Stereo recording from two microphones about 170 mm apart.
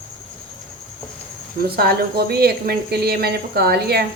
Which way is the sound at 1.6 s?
65° right (ahead or behind).